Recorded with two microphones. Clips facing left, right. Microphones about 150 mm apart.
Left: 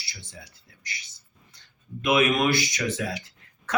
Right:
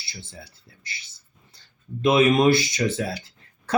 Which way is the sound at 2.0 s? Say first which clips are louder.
Right 4 dB; 30° right (ahead or behind).